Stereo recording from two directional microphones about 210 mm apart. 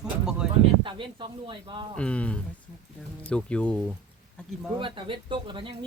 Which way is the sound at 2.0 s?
5° left (ahead or behind).